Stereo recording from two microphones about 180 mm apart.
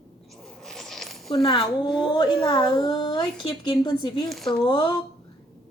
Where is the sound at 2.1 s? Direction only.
25° left (ahead or behind).